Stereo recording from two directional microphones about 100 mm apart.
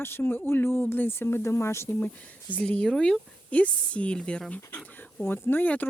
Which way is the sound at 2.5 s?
15° left (ahead or behind).